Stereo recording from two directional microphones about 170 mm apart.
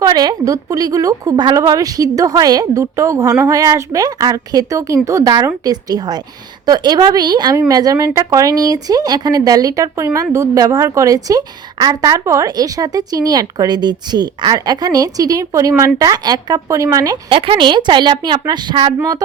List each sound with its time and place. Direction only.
0.0 s speech: 25° right (ahead or behind)